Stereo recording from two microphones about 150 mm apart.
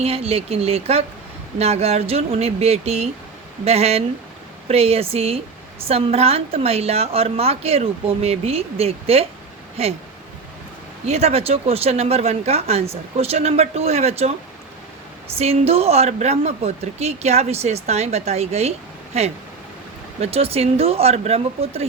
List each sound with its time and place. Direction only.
0.0 s a woman's voice: 45° right (ahead or behind)
11.0 s speech: 45° right (ahead or behind)
15.4 s a woman's voice: 40° right (ahead or behind)